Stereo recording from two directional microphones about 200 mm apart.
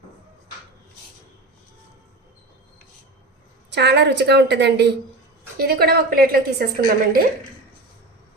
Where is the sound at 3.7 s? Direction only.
55° right (ahead or behind).